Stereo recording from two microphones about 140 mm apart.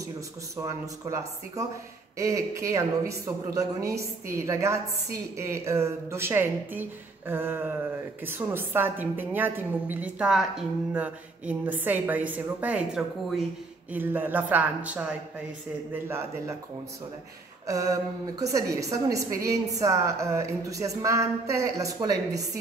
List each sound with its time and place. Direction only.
0.6 s a woman's voice: 20° right (ahead or behind)
17.6 s a woman's voice: 25° right (ahead or behind)